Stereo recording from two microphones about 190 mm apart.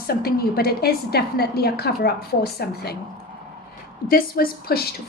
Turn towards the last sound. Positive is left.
turn(degrees=55)  # may be behind; listen again after turning